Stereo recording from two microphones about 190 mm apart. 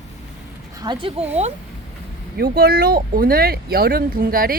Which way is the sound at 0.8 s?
25° right (ahead or behind).